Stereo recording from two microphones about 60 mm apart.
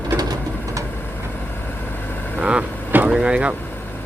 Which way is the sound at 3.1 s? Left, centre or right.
Centre.